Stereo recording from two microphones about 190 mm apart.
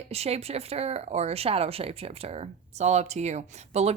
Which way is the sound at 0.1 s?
35° right (ahead or behind).